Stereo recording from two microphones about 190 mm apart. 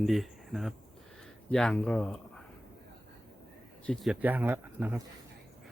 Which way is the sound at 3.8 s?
Centre (ahead or behind).